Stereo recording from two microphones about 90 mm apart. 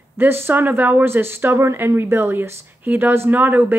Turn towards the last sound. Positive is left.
turn(degrees=-20)  # may be behind; listen again after turning